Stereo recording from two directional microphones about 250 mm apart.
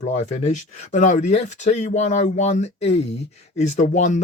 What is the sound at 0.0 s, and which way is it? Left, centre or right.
Speech, left.